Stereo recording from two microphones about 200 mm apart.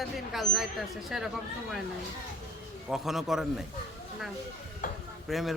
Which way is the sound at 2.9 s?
Centre (ahead or behind).